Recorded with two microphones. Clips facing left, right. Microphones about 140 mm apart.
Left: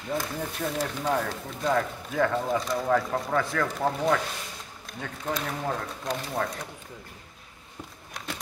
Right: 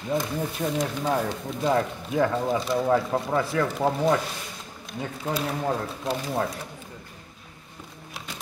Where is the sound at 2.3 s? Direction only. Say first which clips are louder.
Right 2 dB; 5° right (ahead or behind).